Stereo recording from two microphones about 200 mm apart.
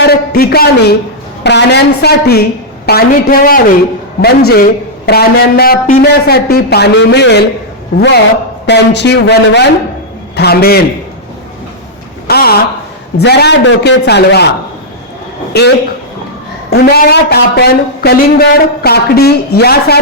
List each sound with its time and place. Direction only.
0.0 s a man's voice: 50° left (ahead or behind)
12.3 s a man's voice: 50° left (ahead or behind)
15.5 s speech: 50° left (ahead or behind)